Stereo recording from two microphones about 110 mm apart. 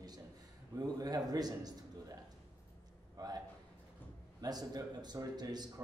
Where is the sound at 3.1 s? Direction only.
35° right (ahead or behind).